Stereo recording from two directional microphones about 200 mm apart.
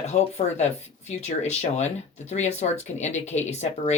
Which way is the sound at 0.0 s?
35° left (ahead or behind).